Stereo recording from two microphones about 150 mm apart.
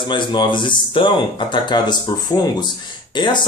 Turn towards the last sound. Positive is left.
turn(degrees=30)  # may be behind; listen again after turning